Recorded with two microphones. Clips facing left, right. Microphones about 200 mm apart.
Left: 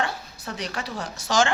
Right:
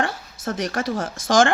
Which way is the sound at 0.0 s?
50° right (ahead or behind).